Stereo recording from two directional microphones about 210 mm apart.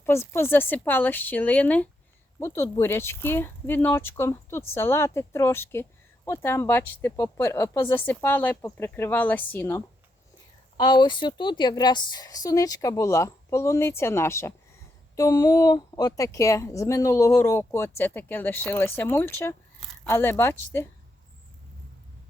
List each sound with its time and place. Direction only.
0.0 s a woman's voice: 10° left (ahead or behind)
10.8 s a woman's voice: 20° left (ahead or behind)